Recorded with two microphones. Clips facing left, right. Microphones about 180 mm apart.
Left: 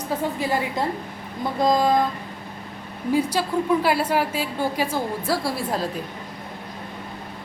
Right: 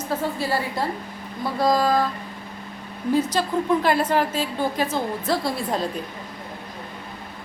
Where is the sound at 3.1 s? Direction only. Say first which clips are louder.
Even; 10° left (ahead or behind).